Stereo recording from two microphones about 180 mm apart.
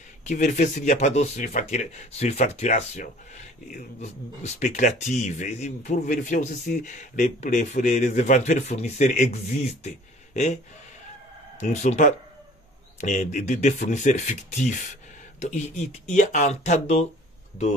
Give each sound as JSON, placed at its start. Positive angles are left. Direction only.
{"t": 0.2, "sound": "speech", "side_deg": 40}
{"t": 11.6, "sound": "speech", "side_deg": 40}
{"t": 16.2, "sound": "speech", "side_deg": 45}